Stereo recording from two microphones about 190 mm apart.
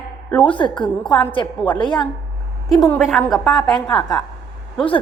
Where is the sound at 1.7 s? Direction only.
25° left (ahead or behind).